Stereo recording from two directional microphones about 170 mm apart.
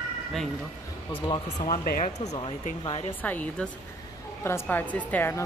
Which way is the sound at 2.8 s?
30° left (ahead or behind).